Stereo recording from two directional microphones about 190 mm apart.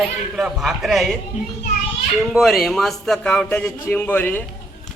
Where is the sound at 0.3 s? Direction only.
Centre (ahead or behind).